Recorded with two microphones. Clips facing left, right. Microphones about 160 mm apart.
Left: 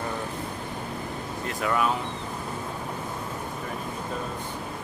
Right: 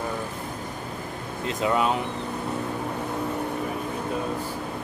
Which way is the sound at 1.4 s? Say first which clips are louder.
Right 3 dB; 20° right (ahead or behind).